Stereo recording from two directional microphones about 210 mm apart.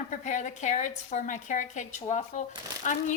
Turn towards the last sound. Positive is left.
turn(degrees=35)  # may be behind; listen again after turning